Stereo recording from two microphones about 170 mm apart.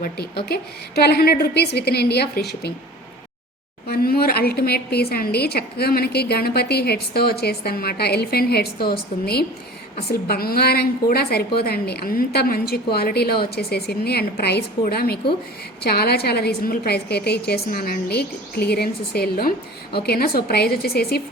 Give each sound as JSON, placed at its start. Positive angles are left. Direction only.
{"t": 0.0, "sound": "a woman's voice", "side_deg": 70}
{"t": 3.8, "sound": "a woman's voice", "side_deg": 60}